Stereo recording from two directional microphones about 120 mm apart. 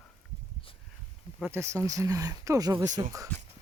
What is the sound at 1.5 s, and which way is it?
Speech, 25° right (ahead or behind).